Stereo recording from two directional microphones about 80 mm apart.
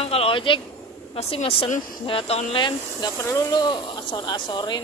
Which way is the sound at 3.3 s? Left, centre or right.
Left.